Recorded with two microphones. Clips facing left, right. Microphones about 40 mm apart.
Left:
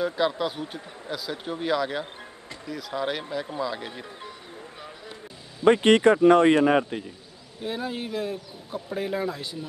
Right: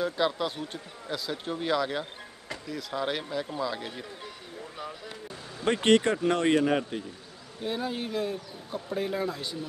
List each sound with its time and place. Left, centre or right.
0.0 s speech: centre
5.9 s speech: left
7.6 s speech: centre